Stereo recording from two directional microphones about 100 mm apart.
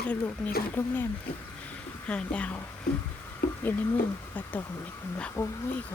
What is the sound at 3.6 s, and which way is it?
Speech, 20° left (ahead or behind).